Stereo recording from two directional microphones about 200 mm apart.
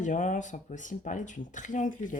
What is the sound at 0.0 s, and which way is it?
Speech, 40° left (ahead or behind).